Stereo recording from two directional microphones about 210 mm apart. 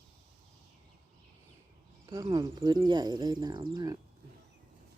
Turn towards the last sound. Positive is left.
turn(degrees=-20)  # may be behind; listen again after turning